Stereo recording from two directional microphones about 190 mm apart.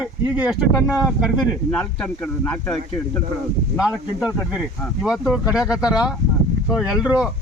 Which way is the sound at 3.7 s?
5° right (ahead or behind).